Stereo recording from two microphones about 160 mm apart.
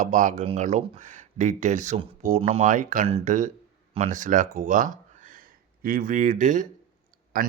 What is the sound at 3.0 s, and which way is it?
A man's voice, 45° right (ahead or behind).